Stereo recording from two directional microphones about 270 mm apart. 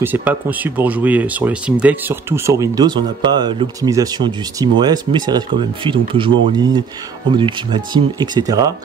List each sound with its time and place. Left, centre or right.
0.0 s speech: centre